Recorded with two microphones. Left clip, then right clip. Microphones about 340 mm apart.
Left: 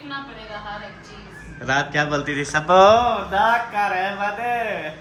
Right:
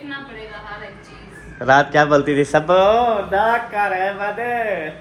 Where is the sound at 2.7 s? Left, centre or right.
Left.